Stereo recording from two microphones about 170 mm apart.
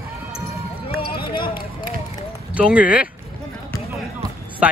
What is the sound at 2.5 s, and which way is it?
Speech, 5° right (ahead or behind).